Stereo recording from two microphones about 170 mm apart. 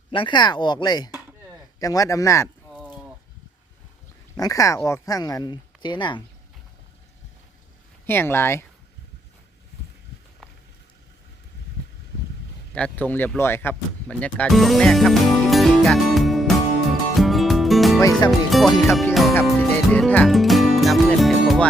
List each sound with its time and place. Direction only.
0.1 s speech: 30° left (ahead or behind)
2.7 s a sound: 10° right (ahead or behind)
4.4 s speech: 20° left (ahead or behind)
8.0 s speech: 15° left (ahead or behind)
12.7 s speech: 10° left (ahead or behind)
17.2 s music: centre (ahead or behind)
18.3 s speech: centre (ahead or behind)
19.1 s music: centre (ahead or behind)